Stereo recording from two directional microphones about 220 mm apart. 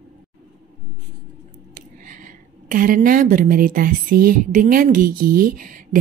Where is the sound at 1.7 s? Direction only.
35° right (ahead or behind).